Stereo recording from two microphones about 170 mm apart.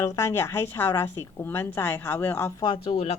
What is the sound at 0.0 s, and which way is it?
Speech, 15° left (ahead or behind).